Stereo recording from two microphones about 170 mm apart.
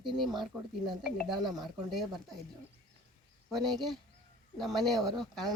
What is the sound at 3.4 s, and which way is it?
Speech, centre (ahead or behind).